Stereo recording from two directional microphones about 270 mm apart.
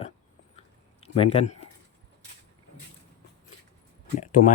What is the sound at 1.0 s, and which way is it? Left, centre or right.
Speech, left.